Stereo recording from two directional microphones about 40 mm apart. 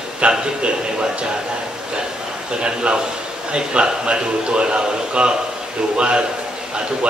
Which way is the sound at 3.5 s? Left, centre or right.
Right.